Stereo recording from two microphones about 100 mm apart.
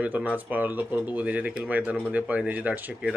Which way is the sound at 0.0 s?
15° right (ahead or behind).